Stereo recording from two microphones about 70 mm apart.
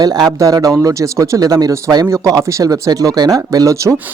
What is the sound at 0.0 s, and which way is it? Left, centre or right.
Speech, right.